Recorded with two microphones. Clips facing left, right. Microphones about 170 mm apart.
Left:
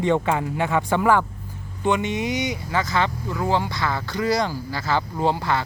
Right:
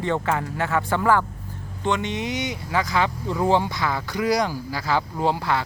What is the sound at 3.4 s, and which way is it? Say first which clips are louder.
Speech: right 2 dB; 20° right (ahead or behind).